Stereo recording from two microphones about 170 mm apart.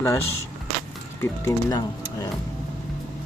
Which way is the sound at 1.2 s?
15° left (ahead or behind).